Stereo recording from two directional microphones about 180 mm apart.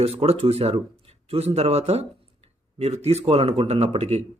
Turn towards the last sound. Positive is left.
turn(degrees=-35)  # may be behind; listen again after turning